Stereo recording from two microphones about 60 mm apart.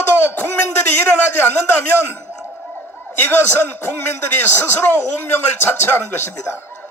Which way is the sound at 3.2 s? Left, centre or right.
Left.